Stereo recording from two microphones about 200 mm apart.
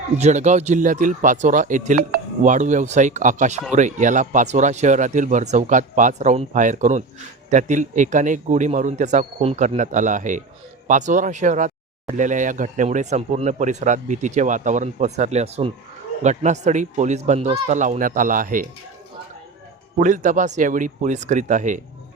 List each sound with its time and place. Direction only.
0.2 s speech: 35° right (ahead or behind)
20.0 s speech: 40° right (ahead or behind)